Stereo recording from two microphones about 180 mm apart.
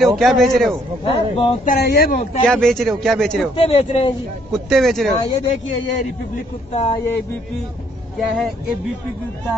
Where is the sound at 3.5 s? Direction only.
35° left (ahead or behind).